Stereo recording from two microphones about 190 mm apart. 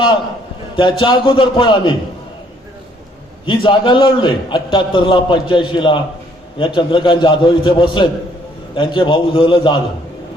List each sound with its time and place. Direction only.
0.8 s a man's voice: 25° left (ahead or behind)
3.4 s a man's voice: 25° left (ahead or behind)